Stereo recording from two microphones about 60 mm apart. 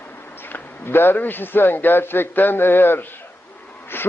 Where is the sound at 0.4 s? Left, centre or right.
Left.